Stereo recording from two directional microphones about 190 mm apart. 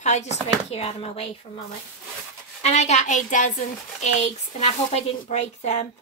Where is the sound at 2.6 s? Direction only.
35° left (ahead or behind).